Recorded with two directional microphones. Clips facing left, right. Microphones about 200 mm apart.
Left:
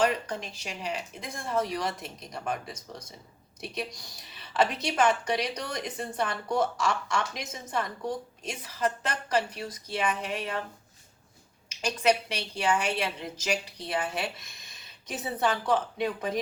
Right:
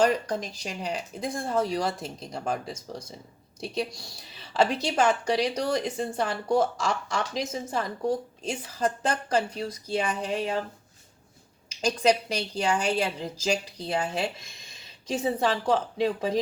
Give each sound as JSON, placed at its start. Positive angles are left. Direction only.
{"t": 0.0, "sound": "a woman's voice", "side_deg": -40}
{"t": 11.8, "sound": "a woman's voice", "side_deg": -30}
{"t": 15.4, "sound": "speech", "side_deg": -30}